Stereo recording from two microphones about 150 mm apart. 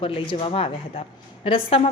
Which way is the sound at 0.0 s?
35° left (ahead or behind).